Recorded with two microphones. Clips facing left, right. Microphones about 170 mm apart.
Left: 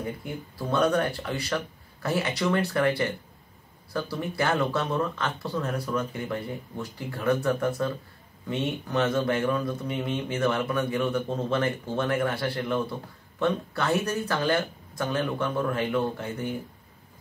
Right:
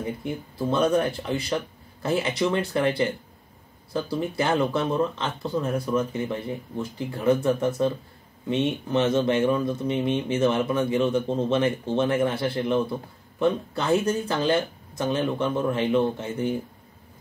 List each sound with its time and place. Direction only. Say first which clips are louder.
0.2 s speech: right 6 dB; 20° right (ahead or behind)